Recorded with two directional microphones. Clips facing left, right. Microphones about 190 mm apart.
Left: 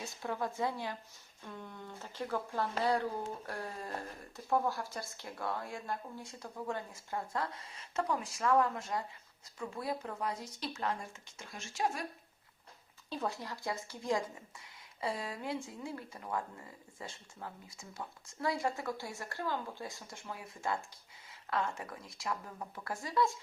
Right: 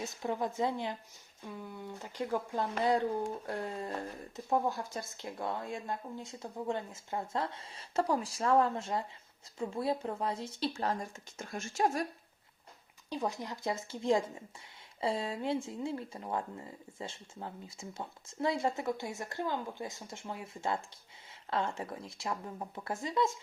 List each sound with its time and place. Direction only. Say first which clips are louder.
0.0 s speech: right 3 dB; 20° right (ahead or behind)
1.4 s speech: right 3 dB; 10° right (ahead or behind); by 12.0 s 45° right (ahead or behind)
13.1 s speech: right 2 dB; 15° right (ahead or behind)